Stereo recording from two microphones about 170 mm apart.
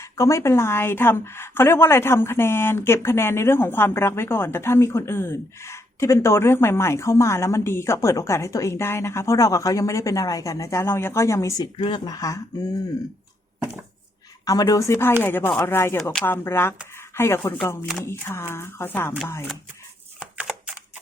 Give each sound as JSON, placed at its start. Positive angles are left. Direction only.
{"t": 0.0, "sound": "a woman's voice", "side_deg": 15}
{"t": 14.4, "sound": "a woman's voice", "side_deg": 20}